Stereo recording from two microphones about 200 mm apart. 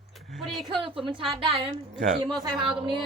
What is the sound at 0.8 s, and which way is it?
A woman's voice, 25° right (ahead or behind).